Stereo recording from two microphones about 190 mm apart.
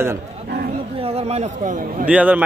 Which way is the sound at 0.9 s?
30° right (ahead or behind).